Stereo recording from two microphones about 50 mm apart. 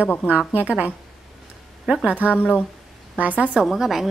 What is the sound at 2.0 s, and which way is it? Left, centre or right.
A woman's voice, right.